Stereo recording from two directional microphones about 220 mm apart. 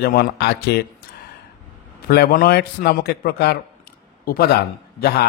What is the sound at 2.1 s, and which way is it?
Speech, 45° left (ahead or behind).